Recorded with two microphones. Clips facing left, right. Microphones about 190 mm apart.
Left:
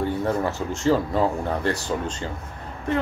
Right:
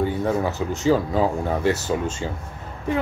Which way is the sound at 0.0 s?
5° right (ahead or behind).